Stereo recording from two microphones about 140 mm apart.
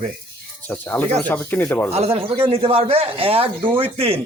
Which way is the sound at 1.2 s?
15° left (ahead or behind).